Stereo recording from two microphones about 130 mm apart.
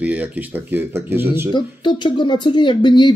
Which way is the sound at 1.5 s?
35° left (ahead or behind).